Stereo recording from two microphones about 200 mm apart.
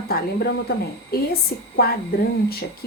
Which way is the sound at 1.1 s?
50° left (ahead or behind).